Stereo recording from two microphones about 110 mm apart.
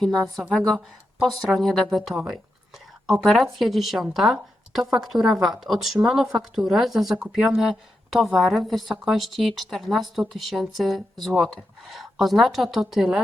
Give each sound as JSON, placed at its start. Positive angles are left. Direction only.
{"t": 0.5, "sound": "speech", "side_deg": 5}